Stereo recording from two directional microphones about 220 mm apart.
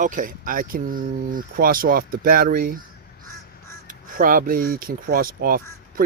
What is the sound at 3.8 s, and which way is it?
Speech, 40° right (ahead or behind).